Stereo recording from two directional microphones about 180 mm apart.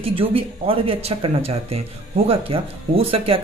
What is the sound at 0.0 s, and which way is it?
Speech, 30° right (ahead or behind).